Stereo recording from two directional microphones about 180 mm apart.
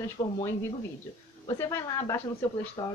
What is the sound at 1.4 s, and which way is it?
A woman's voice, 20° left (ahead or behind).